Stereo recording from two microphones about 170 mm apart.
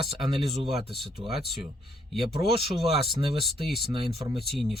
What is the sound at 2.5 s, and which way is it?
Speech, 30° right (ahead or behind).